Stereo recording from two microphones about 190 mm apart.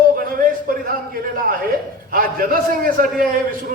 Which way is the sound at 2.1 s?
50° right (ahead or behind).